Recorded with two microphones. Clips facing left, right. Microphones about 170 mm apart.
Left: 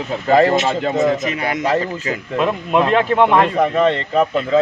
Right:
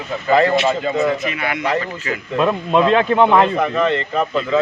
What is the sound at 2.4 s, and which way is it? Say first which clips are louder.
Speech: right 1 dB; 5° left (ahead or behind).